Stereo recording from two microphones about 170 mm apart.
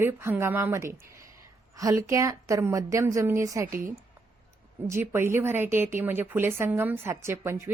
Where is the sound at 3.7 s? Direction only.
55° right (ahead or behind).